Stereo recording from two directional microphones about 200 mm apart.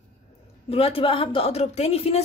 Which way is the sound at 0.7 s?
30° left (ahead or behind).